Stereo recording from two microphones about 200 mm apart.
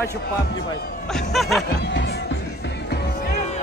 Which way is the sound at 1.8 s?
55° left (ahead or behind).